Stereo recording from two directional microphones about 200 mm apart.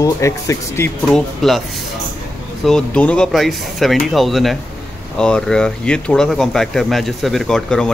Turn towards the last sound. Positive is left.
turn(degrees=5)  # may be behind; listen again after turning